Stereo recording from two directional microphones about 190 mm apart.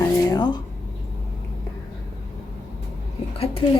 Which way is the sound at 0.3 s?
20° left (ahead or behind).